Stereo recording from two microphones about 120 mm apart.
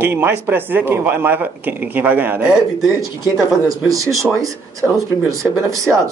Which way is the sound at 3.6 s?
30° right (ahead or behind).